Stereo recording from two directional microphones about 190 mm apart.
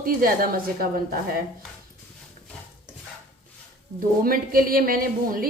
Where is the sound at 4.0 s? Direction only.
50° right (ahead or behind).